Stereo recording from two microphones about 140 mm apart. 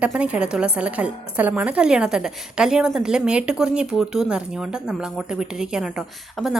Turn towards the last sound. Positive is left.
turn(degrees=-5)  # may be behind; listen again after turning